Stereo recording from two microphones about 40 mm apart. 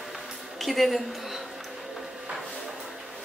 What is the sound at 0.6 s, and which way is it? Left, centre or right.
Speech, centre.